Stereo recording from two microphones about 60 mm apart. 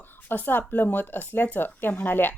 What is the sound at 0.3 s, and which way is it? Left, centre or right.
Speech, left.